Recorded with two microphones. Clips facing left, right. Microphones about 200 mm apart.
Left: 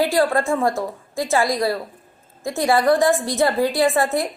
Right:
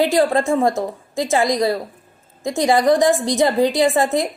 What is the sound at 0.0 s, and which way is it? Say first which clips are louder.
A woman's voice: right 2 dB; 20° right (ahead or behind).